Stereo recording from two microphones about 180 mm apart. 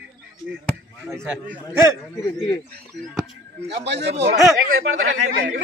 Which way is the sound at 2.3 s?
25° left (ahead or behind).